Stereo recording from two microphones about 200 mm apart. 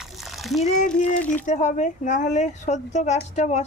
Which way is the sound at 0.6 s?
35° left (ahead or behind).